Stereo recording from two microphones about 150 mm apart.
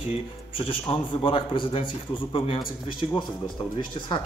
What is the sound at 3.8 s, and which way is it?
Speech, 30° left (ahead or behind).